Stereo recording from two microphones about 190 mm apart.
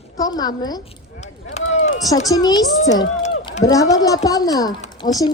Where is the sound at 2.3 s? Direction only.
20° left (ahead or behind).